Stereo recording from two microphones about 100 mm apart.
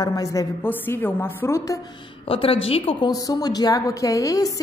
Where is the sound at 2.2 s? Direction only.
65° left (ahead or behind).